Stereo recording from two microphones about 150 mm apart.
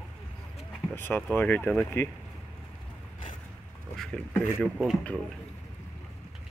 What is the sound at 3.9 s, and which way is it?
Speech, 5° left (ahead or behind).